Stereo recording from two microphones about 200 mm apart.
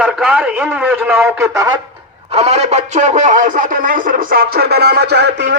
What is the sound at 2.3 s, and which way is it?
Speech, 30° right (ahead or behind).